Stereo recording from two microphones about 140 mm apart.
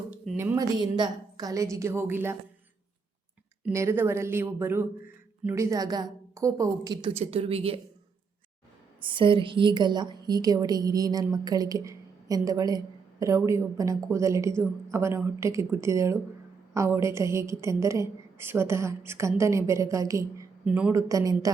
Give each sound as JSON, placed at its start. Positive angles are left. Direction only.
{"t": 0.3, "sound": "a woman's voice", "side_deg": -20}
{"t": 0.8, "sound": "a woman's voice", "side_deg": -30}
{"t": 3.7, "sound": "a woman's voice", "side_deg": -20}
{"t": 7.1, "sound": "speech", "side_deg": -45}
{"t": 9.0, "sound": "a woman's voice", "side_deg": -35}
{"t": 20.7, "sound": "a woman's voice", "side_deg": -10}
{"t": 20.9, "sound": "a woman's voice", "side_deg": -25}